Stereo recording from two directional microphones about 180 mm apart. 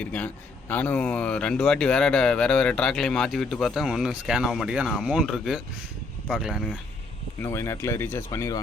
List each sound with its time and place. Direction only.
0.0 s speech: 5° left (ahead or behind)
7.4 s speech: 15° left (ahead or behind)